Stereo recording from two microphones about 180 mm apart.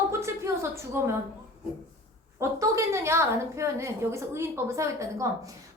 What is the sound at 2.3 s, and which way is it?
A woman's voice, 15° right (ahead or behind).